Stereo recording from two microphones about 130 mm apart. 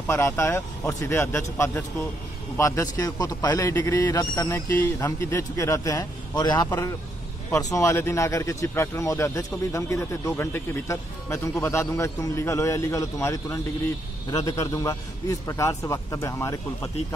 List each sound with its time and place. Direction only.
0.0 s speech: 20° left (ahead or behind)